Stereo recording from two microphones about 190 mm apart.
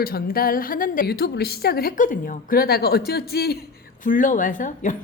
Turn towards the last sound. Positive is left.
turn(degrees=40)  # may be behind; listen again after turning